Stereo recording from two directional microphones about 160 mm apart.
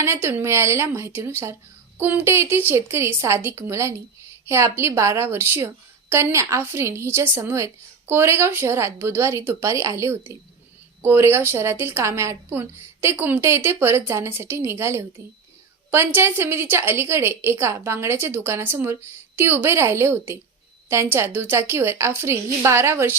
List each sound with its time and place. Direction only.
0.0 s a woman's voice: 15° right (ahead or behind)